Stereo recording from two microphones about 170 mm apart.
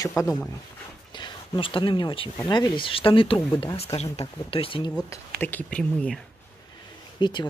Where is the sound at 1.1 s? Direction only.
30° left (ahead or behind).